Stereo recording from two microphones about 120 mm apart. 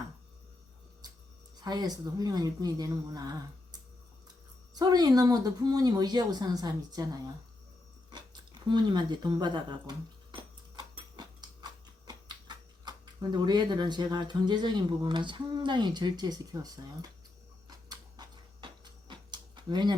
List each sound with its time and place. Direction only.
1.5 s speech: 35° right (ahead or behind)
10.3 s tick-tock: 40° right (ahead or behind)
13.3 s speech: 35° right (ahead or behind)
17.7 s a sound: 35° right (ahead or behind)